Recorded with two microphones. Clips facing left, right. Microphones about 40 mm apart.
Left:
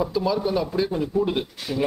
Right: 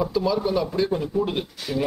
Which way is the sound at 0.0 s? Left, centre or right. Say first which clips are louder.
Even; centre.